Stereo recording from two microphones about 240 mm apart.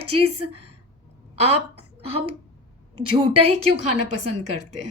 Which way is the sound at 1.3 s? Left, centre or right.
Right.